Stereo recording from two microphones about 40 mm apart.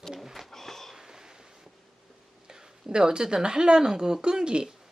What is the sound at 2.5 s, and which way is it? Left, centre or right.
Speech, centre.